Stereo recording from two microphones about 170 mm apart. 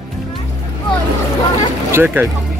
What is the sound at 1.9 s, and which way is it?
Speech, 15° right (ahead or behind).